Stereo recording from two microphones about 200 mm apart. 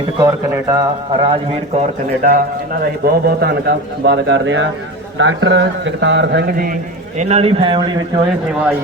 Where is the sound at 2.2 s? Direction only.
45° right (ahead or behind); by 8.2 s 25° right (ahead or behind).